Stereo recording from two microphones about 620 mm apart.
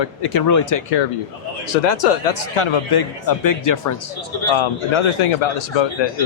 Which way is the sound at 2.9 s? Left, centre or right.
Left.